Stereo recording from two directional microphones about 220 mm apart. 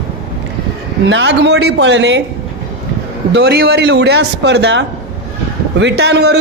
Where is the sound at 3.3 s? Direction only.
50° right (ahead or behind).